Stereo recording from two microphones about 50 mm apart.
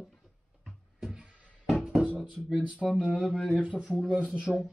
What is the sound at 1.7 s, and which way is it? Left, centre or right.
Music, centre.